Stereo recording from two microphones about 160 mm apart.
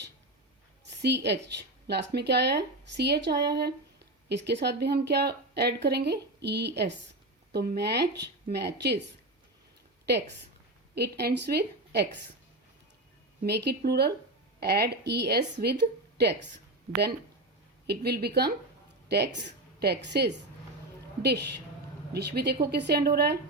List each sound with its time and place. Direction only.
0.9 s speech: 90° right
10.9 s speech: 90° right
13.4 s speech: 90° right
17.8 s speech: 90° right